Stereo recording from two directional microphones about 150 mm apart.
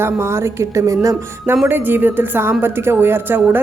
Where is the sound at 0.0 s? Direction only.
15° right (ahead or behind).